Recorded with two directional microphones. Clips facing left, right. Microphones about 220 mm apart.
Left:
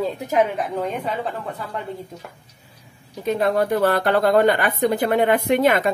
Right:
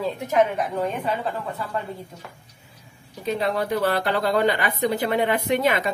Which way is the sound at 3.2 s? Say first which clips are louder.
Left 4 dB; 50° left (ahead or behind).